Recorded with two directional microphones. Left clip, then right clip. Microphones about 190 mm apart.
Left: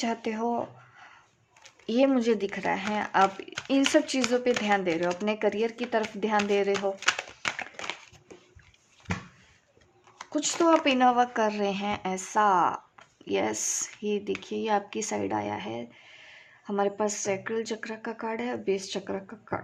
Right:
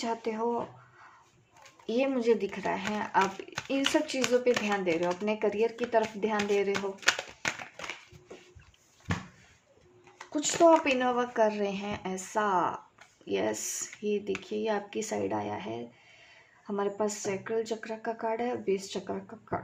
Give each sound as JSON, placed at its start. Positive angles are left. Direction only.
{"t": 0.0, "sound": "speech", "side_deg": 40}
{"t": 1.9, "sound": "speech", "side_deg": 40}
{"t": 6.7, "sound": "crumpling", "side_deg": 20}
{"t": 10.3, "sound": "speech", "side_deg": 40}